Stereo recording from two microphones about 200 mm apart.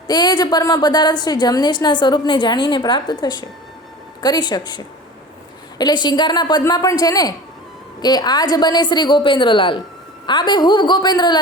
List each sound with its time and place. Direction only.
0.1 s a woman's voice: 20° left (ahead or behind)